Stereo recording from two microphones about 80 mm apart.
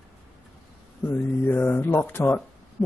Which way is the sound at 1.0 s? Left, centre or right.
Left.